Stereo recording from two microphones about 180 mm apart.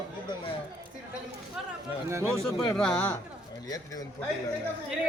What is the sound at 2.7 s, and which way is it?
Speech, 5° left (ahead or behind).